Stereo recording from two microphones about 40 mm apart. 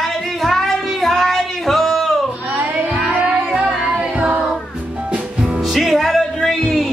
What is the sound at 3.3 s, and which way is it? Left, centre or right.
Music, right.